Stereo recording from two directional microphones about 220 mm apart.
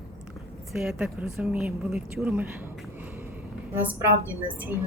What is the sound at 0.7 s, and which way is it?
Speech, centre (ahead or behind).